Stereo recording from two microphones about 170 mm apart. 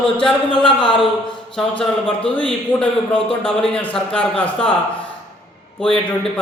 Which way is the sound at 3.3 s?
30° left (ahead or behind).